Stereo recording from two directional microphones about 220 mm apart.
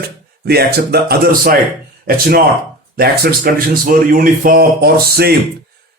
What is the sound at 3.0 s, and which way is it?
A man's voice, 40° right (ahead or behind).